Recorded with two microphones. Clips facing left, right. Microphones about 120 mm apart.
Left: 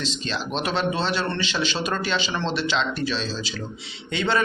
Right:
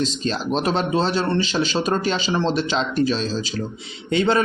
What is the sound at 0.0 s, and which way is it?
A man's voice, 40° right (ahead or behind).